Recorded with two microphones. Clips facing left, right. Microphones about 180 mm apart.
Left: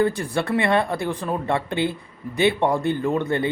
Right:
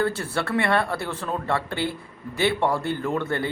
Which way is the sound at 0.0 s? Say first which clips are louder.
Left 4 dB; 15° left (ahead or behind).